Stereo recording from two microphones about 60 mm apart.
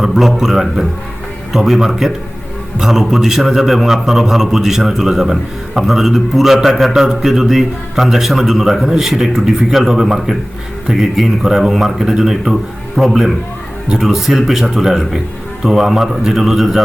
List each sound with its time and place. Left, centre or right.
0.0 s a man's voice: centre